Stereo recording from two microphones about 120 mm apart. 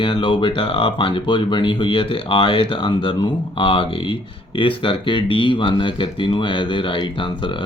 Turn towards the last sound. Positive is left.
turn(degrees=45)  # may be behind; listen again after turning